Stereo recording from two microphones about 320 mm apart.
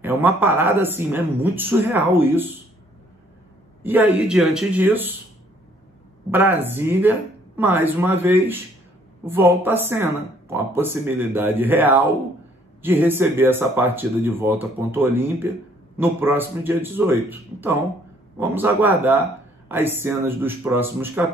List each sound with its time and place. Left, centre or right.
0.0 s speech: centre
3.8 s speech: centre
6.3 s speech: centre